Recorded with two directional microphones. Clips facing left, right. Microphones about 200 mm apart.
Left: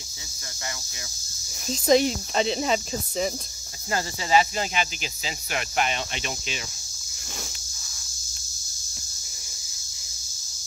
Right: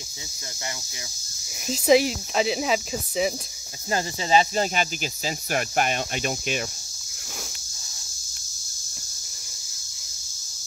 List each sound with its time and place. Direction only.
1.7 s speech: 5° right (ahead or behind)
3.9 s speech: 25° right (ahead or behind)
4.6 s speech: 45° right (ahead or behind)